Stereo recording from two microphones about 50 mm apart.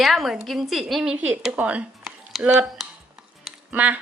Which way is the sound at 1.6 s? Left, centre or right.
Right.